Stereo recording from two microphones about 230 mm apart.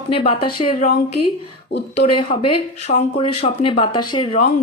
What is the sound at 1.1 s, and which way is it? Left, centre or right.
Speech, left.